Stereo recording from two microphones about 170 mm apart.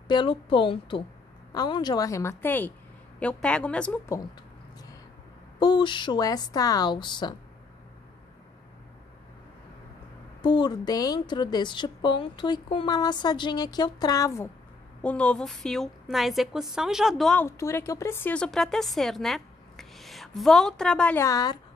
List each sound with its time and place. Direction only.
0.1 s a woman's voice: 30° left (ahead or behind)
5.6 s a woman's voice: 25° left (ahead or behind)
10.4 s a woman's voice: 25° left (ahead or behind)
15.0 s a woman's voice: 5° left (ahead or behind)
17.5 s speech: 15° left (ahead or behind)
21.2 s a woman's voice: 20° left (ahead or behind)